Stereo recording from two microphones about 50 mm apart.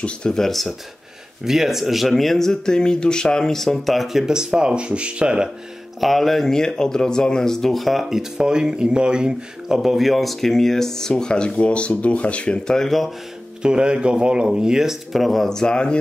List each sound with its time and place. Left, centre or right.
0.0 s speech: centre
1.4 s speech: centre
5.9 s speech: centre
9.8 s speech: centre; by 12.7 s left
12.7 s speech: centre
13.6 s speech: centre
15.1 s speech: centre